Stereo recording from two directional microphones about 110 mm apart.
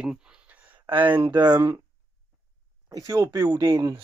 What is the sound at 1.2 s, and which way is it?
Speech, 40° right (ahead or behind).